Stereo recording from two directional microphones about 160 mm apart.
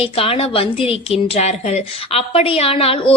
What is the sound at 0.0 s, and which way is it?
A woman's voice, 35° left (ahead or behind).